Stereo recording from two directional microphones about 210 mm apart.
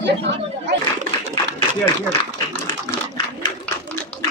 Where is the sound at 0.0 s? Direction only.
55° right (ahead or behind).